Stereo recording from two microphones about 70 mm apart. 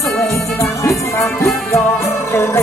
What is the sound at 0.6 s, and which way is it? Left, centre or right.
Music, left.